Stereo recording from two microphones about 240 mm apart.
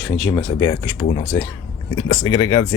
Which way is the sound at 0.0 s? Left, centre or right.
Centre.